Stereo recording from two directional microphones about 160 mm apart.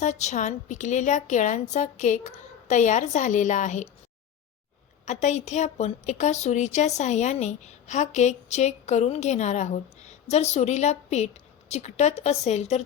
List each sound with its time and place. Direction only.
0.0 s a woman's voice: 45° left (ahead or behind)
5.0 s a woman's voice: 45° left (ahead or behind)